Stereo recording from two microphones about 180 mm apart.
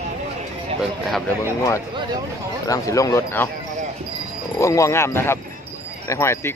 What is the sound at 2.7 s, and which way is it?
Speech, 15° left (ahead or behind).